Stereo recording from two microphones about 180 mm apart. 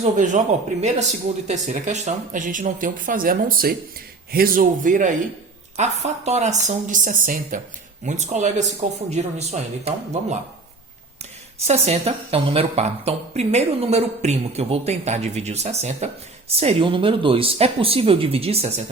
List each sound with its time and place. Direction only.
0.0 s a woman's voice: 45° right (ahead or behind)
11.6 s a woman's voice: 35° right (ahead or behind)